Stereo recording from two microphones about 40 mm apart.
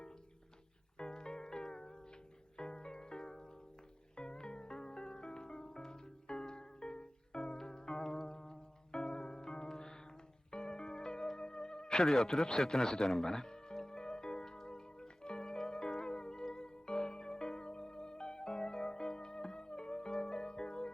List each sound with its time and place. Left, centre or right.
0.9 s music: centre
12.0 s speech: centre
13.2 s music: centre